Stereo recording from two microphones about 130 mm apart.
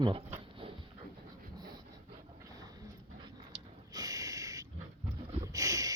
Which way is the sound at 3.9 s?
25° right (ahead or behind).